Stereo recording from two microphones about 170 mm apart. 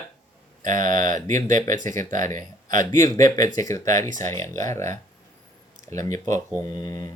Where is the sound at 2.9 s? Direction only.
20° left (ahead or behind).